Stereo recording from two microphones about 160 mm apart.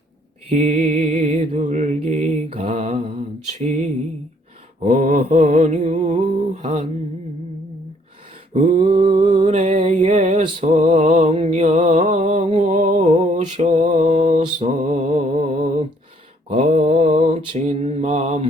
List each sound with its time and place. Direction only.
0.5 s mantra: 40° right (ahead or behind)
4.9 s mantra: 55° right (ahead or behind); by 6.8 s 35° right (ahead or behind)
8.5 s mantra: 50° right (ahead or behind)
9.2 s music: 35° right (ahead or behind)
16.5 s mantra: 40° right (ahead or behind)